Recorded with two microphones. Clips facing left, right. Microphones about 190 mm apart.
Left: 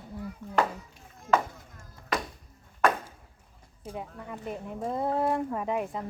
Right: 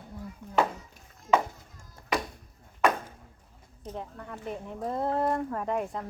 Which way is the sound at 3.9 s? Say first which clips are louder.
Left 1 dB; 5° left (ahead or behind).